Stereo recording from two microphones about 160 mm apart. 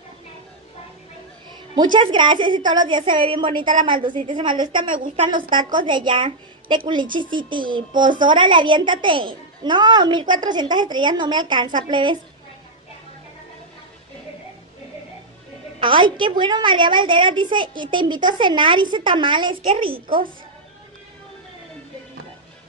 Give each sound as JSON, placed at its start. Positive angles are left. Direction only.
{"t": 1.8, "sound": "a woman's voice", "side_deg": -30}
{"t": 15.8, "sound": "a woman's voice", "side_deg": -30}